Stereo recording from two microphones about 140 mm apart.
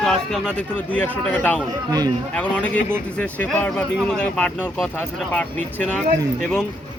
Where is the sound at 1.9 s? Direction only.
25° right (ahead or behind).